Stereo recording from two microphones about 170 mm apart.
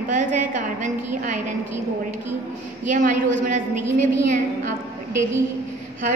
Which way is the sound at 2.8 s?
50° right (ahead or behind).